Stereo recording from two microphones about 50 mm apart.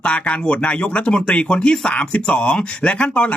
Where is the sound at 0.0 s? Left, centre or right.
Left.